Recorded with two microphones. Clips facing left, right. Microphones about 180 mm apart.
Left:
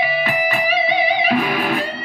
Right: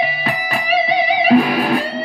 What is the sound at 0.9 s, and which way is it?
Music, 35° right (ahead or behind).